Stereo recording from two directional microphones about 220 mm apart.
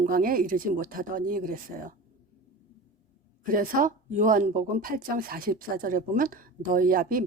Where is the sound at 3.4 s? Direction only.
40° right (ahead or behind).